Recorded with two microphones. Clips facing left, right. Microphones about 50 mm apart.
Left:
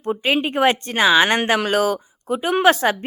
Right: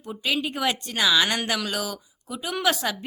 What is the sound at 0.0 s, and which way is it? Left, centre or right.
A woman's voice, left.